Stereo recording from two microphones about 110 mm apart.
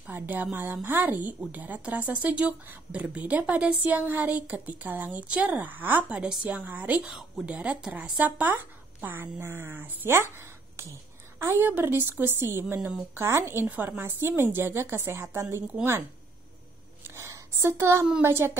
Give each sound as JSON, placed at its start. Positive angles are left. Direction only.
{"t": 0.0, "sound": "speech", "side_deg": -15}
{"t": 7.1, "sound": "a woman's voice", "side_deg": 0}
{"t": 15.6, "sound": "speech", "side_deg": -10}
{"t": 17.0, "sound": "a sound", "side_deg": -25}
{"t": 18.2, "sound": "a woman's voice", "side_deg": -20}